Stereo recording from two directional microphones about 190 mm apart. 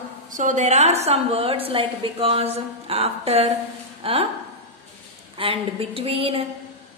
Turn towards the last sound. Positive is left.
turn(degrees=-30)  # may be behind; listen again after turning